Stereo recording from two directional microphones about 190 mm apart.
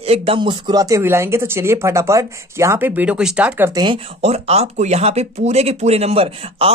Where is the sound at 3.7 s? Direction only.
25° right (ahead or behind).